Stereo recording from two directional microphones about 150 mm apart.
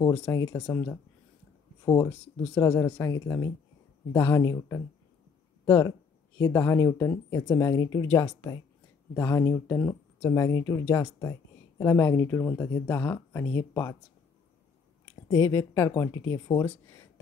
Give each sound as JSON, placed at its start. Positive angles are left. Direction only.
{"t": 0.0, "sound": "speech", "side_deg": 10}
{"t": 0.3, "sound": "speech", "side_deg": 20}
{"t": 0.7, "sound": "speech", "side_deg": 10}
{"t": 2.6, "sound": "speech", "side_deg": 20}
{"t": 15.2, "sound": "speech", "side_deg": 20}